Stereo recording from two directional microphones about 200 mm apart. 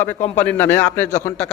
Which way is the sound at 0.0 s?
10° left (ahead or behind).